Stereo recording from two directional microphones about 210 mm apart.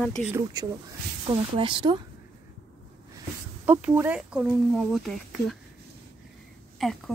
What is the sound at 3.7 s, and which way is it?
A woman's voice, 5° right (ahead or behind).